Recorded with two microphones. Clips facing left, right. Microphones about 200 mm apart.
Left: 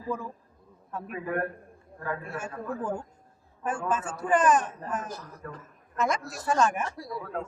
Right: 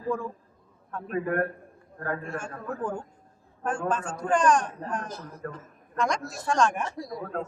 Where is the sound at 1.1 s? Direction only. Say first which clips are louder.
Right 5 dB; 50° right (ahead or behind).